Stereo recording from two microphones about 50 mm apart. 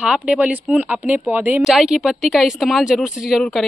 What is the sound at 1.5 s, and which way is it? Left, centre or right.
Speech, centre.